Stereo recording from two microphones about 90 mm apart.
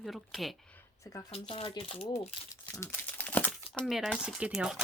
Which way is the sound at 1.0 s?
40° left (ahead or behind).